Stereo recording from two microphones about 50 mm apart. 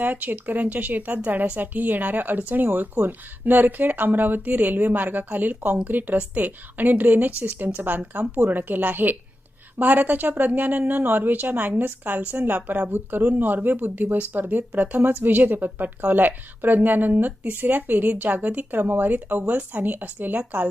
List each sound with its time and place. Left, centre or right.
0.0 s speech: right